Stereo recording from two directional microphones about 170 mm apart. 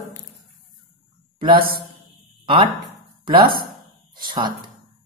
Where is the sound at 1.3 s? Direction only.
30° right (ahead or behind).